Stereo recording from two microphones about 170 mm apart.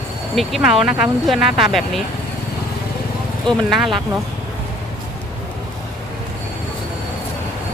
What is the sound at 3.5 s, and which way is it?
Speech, centre (ahead or behind).